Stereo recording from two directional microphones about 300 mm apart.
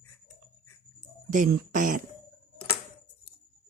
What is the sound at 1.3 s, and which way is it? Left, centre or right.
Speech, right.